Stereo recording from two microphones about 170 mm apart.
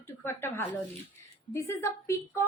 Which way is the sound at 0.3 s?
15° left (ahead or behind).